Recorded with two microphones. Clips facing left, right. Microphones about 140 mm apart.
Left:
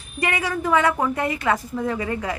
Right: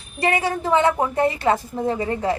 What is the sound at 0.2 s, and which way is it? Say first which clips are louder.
A woman's voice: right 3 dB; 30° right (ahead or behind).